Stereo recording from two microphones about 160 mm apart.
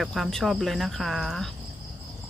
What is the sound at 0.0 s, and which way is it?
Speech, centre (ahead or behind).